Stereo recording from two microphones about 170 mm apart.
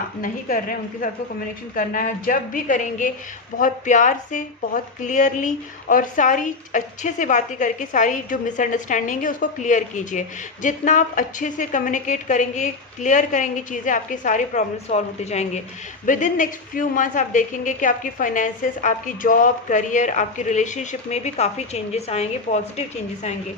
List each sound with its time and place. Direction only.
0.2 s a woman's voice: 55° left (ahead or behind); by 22.6 s 40° left (ahead or behind)